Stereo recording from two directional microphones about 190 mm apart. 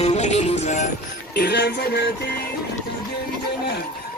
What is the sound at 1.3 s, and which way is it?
Music, 60° left (ahead or behind).